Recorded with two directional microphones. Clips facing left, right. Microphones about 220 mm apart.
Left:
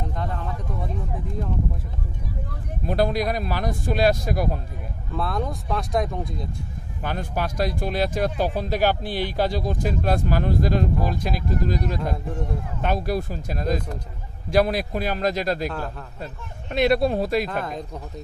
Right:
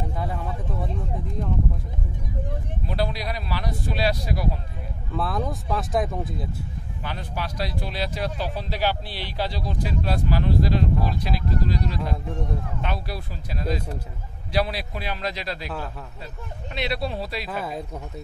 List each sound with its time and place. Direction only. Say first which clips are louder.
0.2 s speech: even; 5° right (ahead or behind)
2.9 s speech: left 6 dB; 50° left (ahead or behind)
5.1 s speech: even; centre (ahead or behind)
7.0 s speech: left 5 dB; 50° left (ahead or behind)
16.7 s speech: left 9 dB; 50° left (ahead or behind)
17.5 s speech: left 1 dB; 5° right (ahead or behind)